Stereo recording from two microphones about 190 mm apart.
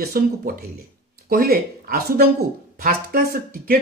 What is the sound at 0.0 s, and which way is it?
Speech, 50° right (ahead or behind).